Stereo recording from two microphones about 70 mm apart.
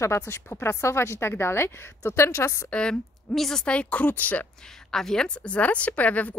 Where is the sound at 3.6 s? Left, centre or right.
Centre.